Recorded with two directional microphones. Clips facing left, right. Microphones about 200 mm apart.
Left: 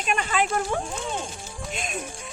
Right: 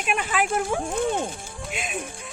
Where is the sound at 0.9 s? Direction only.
55° right (ahead or behind).